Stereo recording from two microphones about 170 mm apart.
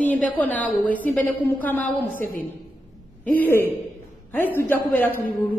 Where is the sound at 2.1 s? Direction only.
55° left (ahead or behind).